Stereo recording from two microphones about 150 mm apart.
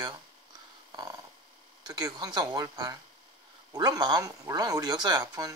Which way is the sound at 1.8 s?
25° right (ahead or behind).